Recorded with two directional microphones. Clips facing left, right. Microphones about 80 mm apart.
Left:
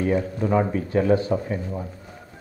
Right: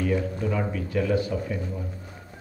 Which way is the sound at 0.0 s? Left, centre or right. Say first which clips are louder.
Left 3 dB; left.